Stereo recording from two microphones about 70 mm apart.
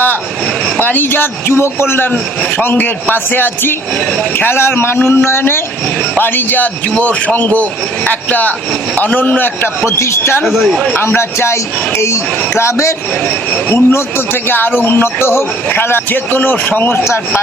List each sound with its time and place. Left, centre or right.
0.8 s a man's voice: left
9.8 s speech: left
10.4 s speech: centre
10.9 s speech: left
13.2 s a man's voice: left